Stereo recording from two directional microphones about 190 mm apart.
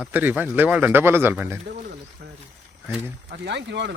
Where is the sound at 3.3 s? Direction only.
65° right (ahead or behind).